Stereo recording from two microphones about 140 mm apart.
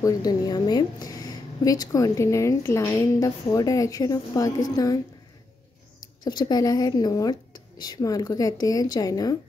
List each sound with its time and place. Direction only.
0.0 s a woman's voice: 25° left (ahead or behind)
6.2 s a woman's voice: 30° left (ahead or behind)